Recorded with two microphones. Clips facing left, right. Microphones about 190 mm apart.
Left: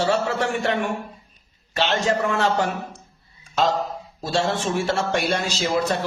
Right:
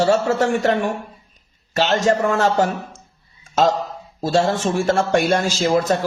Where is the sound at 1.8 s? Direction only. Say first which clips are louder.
Right 4 dB; 40° right (ahead or behind).